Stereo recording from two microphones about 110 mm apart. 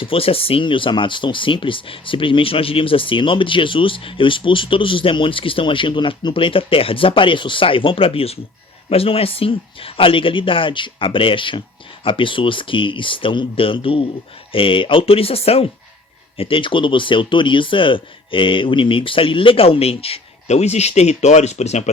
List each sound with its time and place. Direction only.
0.0 s speech: 55° left (ahead or behind)
16.4 s speech: 50° left (ahead or behind); by 21.8 s 90° left